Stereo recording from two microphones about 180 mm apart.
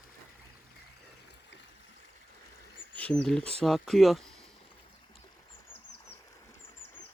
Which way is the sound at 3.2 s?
5° left (ahead or behind).